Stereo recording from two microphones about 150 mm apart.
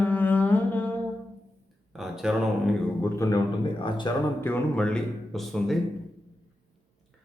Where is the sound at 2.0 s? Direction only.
Centre (ahead or behind).